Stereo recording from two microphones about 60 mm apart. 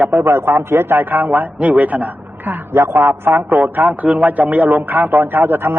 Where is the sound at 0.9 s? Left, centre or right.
Right.